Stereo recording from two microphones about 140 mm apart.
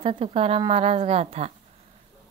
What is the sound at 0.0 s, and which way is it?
Speech, 40° right (ahead or behind).